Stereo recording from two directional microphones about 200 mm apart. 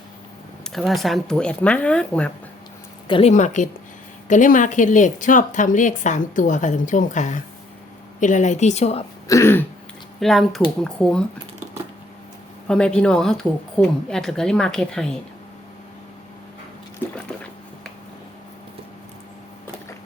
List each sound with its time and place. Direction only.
0.7 s speech: centre (ahead or behind)
3.1 s a woman's voice: 30° left (ahead or behind)
9.3 s throat clearing: 10° left (ahead or behind)
10.2 s speech: centre (ahead or behind)
12.6 s speech: 5° left (ahead or behind)